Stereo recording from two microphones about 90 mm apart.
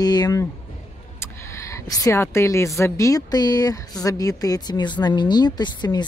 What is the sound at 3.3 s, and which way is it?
A woman's voice, 50° left (ahead or behind).